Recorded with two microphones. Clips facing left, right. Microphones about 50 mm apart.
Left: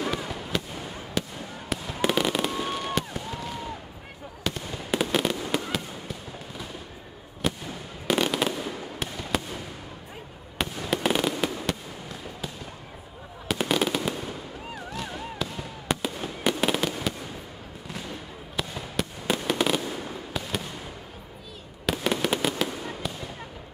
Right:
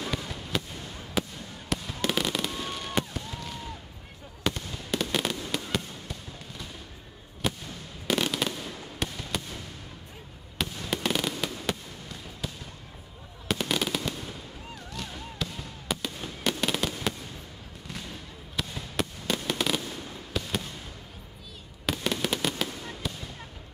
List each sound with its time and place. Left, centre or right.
0.0 s fireworks: centre
4.6 s fireworks: centre
5.4 s fireworks: centre
7.4 s fireworks: centre
10.9 s fireworks: centre
13.6 s fireworks: centre
14.8 s a sound: centre
15.3 s fireworks: centre
21.9 s fireworks: centre
22.7 s fireworks: centre